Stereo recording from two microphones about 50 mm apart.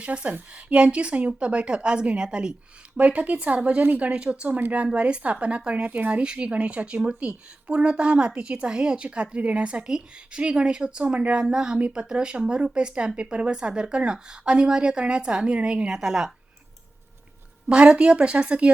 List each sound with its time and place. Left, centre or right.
0.0 s speech: right
3.0 s a woman's voice: right
15.9 s a woman's voice: centre
17.7 s speech: right